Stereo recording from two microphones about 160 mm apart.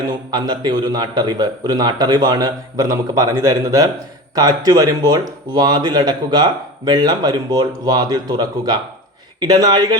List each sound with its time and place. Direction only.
0.3 s speech: 25° right (ahead or behind)